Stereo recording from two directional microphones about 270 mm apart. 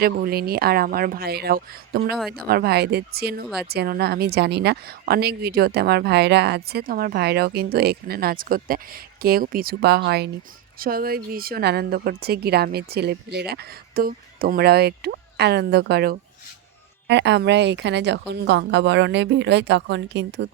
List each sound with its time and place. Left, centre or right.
0.0 s a woman's voice: right